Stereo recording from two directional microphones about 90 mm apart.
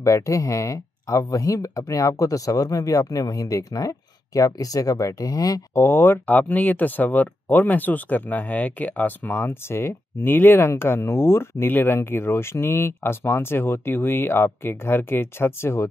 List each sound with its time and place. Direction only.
0.0 s speech: 35° left (ahead or behind)
5.8 s speech: 25° left (ahead or behind)